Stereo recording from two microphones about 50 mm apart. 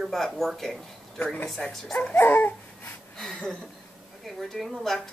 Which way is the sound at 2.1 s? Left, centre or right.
Left.